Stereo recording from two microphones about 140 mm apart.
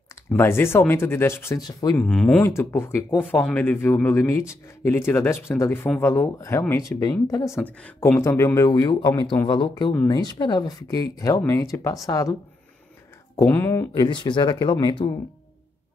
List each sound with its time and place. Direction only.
0.3 s speech: 15° left (ahead or behind)
2.0 s speech: 5° left (ahead or behind)
2.4 s speech: 15° left (ahead or behind)
7.8 s speech: 10° left (ahead or behind)
8.2 s speech: 20° left (ahead or behind)
13.4 s speech: 15° left (ahead or behind)
13.9 s speech: 35° left (ahead or behind)